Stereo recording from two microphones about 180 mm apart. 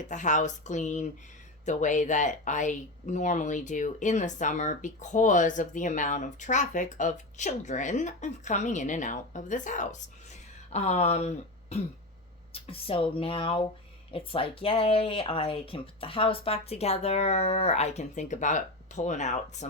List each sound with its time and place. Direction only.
0.1 s speech: 45° left (ahead or behind)